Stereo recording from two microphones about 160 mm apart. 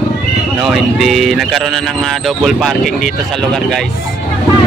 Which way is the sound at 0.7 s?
Centre (ahead or behind).